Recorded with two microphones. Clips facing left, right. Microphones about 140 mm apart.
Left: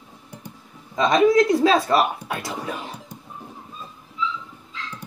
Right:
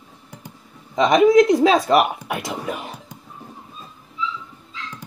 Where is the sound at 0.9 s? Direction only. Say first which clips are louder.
Right 3 dB; 20° right (ahead or behind).